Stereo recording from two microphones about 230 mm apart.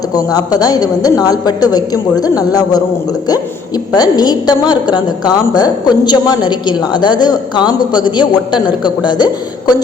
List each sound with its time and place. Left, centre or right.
0.1 s a woman's voice: centre
3.9 s a woman's voice: centre
8.5 s a man's voice: centre
9.0 s speech: centre